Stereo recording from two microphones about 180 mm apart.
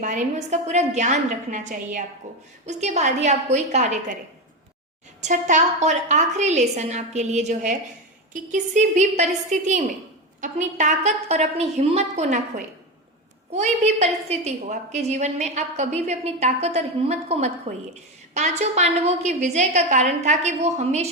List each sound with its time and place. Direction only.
0.0 s a woman's voice: 45° right (ahead or behind)
5.2 s a woman's voice: 45° right (ahead or behind)